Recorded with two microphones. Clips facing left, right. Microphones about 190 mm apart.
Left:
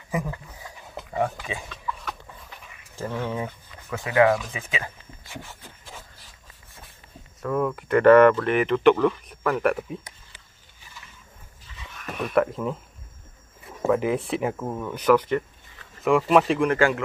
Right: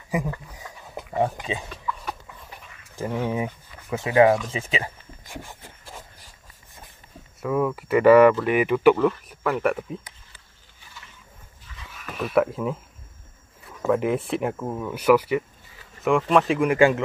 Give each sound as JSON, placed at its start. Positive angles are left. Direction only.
{"t": 1.1, "sound": "dog", "side_deg": -20}
{"t": 3.0, "sound": "speech", "side_deg": -15}
{"t": 5.4, "sound": "rub", "side_deg": -15}
{"t": 7.4, "sound": "speech", "side_deg": -5}
{"t": 11.9, "sound": "speech", "side_deg": 0}
{"t": 13.8, "sound": "speech", "side_deg": 0}
{"t": 16.7, "sound": "speech", "side_deg": -20}